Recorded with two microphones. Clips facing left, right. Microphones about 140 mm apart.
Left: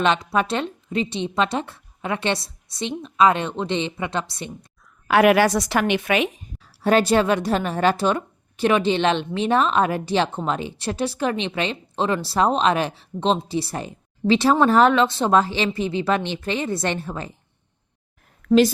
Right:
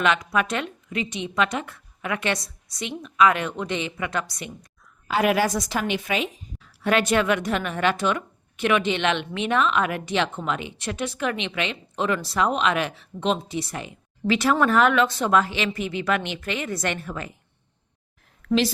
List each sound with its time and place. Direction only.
0.0 s a woman's voice: 30° left (ahead or behind)
5.0 s a woman's voice: 65° left (ahead or behind)
6.6 s a woman's voice: 35° left (ahead or behind)
18.4 s a woman's voice: 45° left (ahead or behind)